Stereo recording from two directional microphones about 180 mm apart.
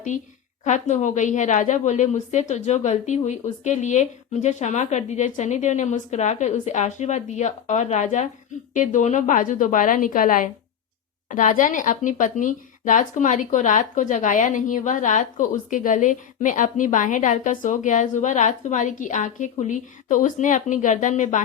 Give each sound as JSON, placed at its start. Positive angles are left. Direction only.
{"t": 0.6, "sound": "a woman's voice", "side_deg": 40}